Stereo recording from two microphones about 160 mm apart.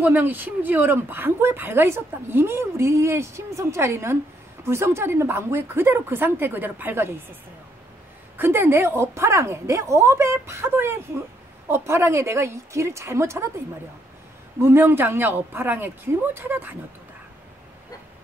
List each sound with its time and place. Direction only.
0.0 s speech: 10° right (ahead or behind)
8.4 s speech: 15° right (ahead or behind)
14.6 s speech: 15° right (ahead or behind)